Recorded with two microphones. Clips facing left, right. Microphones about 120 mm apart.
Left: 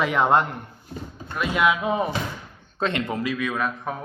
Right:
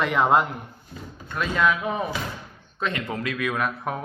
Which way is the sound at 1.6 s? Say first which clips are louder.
Left 2 dB; 20° left (ahead or behind).